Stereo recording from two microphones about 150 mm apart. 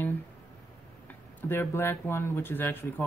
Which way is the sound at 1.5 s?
15° left (ahead or behind).